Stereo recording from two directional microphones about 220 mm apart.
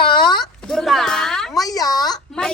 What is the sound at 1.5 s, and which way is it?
Speech, 15° left (ahead or behind).